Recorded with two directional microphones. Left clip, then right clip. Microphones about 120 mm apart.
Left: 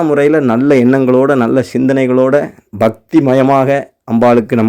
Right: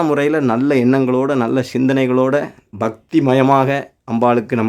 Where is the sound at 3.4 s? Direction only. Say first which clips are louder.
Even; 10° left (ahead or behind).